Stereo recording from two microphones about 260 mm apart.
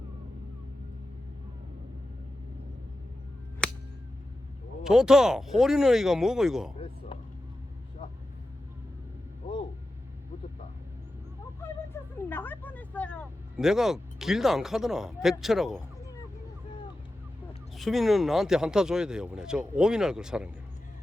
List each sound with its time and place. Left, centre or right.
3.6 s a sound: centre
4.8 s speech: centre
12.3 s speech: centre
17.7 s speech: centre